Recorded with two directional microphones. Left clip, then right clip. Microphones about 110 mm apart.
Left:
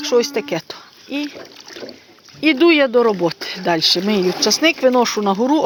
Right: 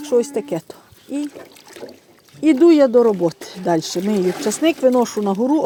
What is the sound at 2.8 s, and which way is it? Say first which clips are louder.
Speech: right 1 dB; 5° right (ahead or behind).